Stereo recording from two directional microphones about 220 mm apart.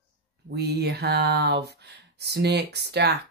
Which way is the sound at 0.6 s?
45° right (ahead or behind).